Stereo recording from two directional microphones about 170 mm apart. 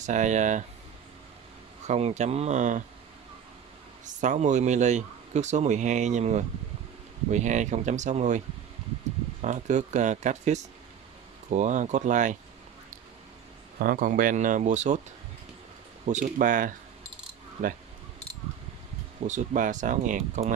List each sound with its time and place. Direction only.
0.0 s speech: 45° right (ahead or behind)
1.9 s speech: 40° right (ahead or behind)
4.0 s speech: 45° right (ahead or behind)
9.4 s speech: 45° right (ahead or behind)
13.7 s speech: 55° right (ahead or behind)
16.1 s speech: 50° right (ahead or behind)
17.6 s speech: 40° right (ahead or behind)
19.2 s speech: 50° right (ahead or behind)